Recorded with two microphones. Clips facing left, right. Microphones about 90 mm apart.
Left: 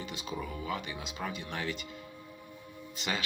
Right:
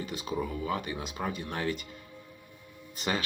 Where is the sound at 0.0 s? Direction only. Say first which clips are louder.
Right 5 dB; 45° right (ahead or behind).